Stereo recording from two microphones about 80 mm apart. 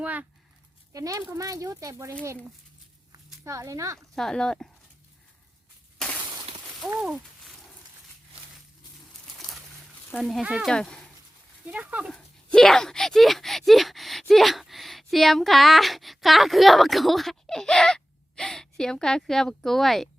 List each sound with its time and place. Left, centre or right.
0.0 s speech: centre
0.9 s speech: right
3.4 s speech: right
3.9 s speech: centre
6.8 s speech: centre
10.4 s speech: centre
10.7 s speech: centre
11.6 s speech: centre
12.1 s speech: centre